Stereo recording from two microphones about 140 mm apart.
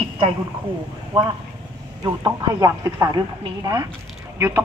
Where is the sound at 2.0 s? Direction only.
25° right (ahead or behind).